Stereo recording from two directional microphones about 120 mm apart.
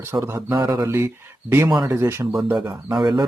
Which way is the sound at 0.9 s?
20° right (ahead or behind).